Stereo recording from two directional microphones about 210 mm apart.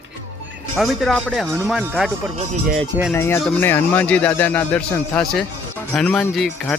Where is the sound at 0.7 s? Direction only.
Centre (ahead or behind).